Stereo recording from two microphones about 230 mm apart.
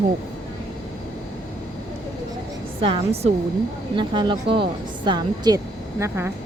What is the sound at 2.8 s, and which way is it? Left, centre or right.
A woman's voice, right.